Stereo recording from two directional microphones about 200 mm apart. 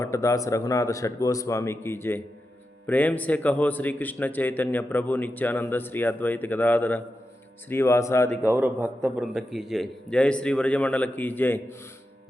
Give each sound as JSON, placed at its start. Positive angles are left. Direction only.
{"t": 0.0, "sound": "a man's voice", "side_deg": 15}
{"t": 8.4, "sound": "a man's voice", "side_deg": -10}